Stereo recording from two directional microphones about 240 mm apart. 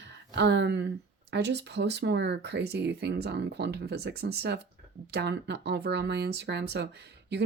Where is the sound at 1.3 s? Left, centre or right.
Right.